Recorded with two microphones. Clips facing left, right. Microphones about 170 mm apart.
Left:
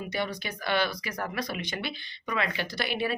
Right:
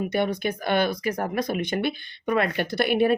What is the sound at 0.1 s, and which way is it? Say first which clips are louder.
Speech: right 8 dB; 55° right (ahead or behind).